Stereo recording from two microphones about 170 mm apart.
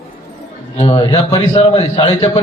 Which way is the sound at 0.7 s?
35° left (ahead or behind).